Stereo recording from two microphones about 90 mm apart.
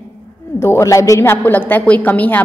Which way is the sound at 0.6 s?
30° left (ahead or behind).